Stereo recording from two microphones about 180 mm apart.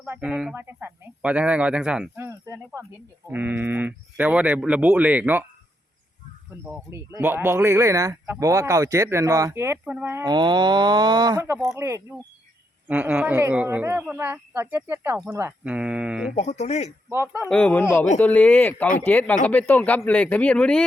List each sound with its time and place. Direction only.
0.0 s speech: 10° right (ahead or behind)
6.7 s speech: 10° right (ahead or behind)
10.3 s speech: 25° right (ahead or behind); by 16.3 s 5° right (ahead or behind)
16.3 s speech: 40° left (ahead or behind)
17.1 s speech: 10° right (ahead or behind)
17.5 s speech: 5° left (ahead or behind)